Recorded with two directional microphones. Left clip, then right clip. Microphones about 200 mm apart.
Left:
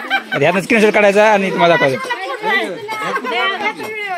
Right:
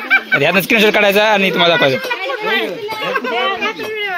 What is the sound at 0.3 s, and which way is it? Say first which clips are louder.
Speech: right 1 dB; 5° left (ahead or behind).